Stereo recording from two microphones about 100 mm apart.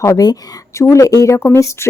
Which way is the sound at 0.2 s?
35° left (ahead or behind).